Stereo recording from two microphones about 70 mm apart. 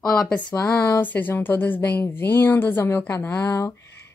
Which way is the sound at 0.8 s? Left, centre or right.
Left.